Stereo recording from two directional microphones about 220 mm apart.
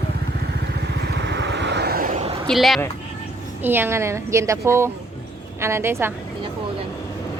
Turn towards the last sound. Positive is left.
turn(degrees=-10)  # may be behind; listen again after turning